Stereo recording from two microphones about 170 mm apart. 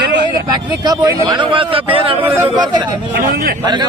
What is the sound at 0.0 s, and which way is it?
Vehicle, 90° right.